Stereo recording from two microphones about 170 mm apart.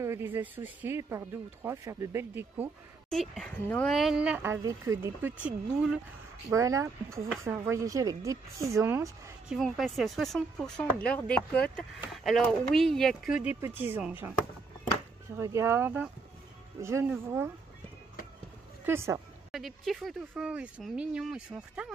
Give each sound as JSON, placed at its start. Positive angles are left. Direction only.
{"t": 0.0, "sound": "speech", "side_deg": -15}
{"t": 3.1, "sound": "speech", "side_deg": 5}
{"t": 9.5, "sound": "speech", "side_deg": 0}
{"t": 15.3, "sound": "speech", "side_deg": -15}
{"t": 18.9, "sound": "speech", "side_deg": -15}
{"t": 19.5, "sound": "speech", "side_deg": 0}